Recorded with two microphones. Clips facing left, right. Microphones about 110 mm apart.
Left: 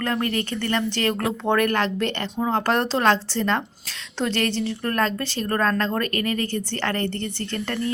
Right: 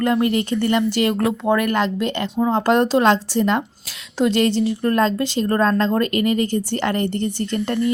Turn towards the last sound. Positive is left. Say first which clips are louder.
# right 6 dB
turn(degrees=-15)  # may be behind; listen again after turning